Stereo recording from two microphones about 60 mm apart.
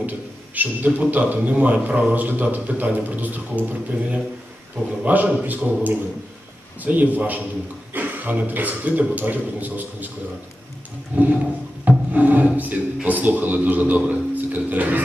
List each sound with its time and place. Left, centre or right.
0.6 s a man's voice: right
11.1 s a man's voice: right